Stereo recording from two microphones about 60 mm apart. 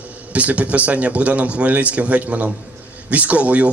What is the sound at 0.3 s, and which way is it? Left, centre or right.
A man's voice, right.